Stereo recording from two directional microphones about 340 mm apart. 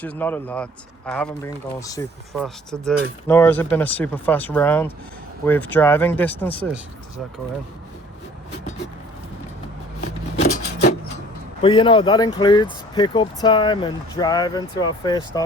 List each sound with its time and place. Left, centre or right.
0.0 s speech: centre
10.0 s rub: left
11.6 s speech: centre